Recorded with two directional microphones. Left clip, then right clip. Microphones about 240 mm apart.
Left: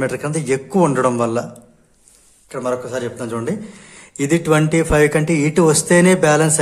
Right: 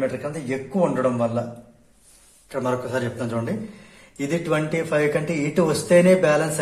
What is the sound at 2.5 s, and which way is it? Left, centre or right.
Speech, left.